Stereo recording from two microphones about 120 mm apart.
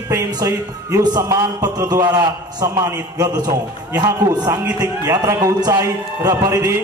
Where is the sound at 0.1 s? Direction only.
25° right (ahead or behind).